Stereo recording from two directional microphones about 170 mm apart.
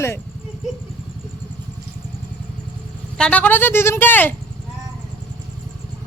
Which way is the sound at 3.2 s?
10° left (ahead or behind).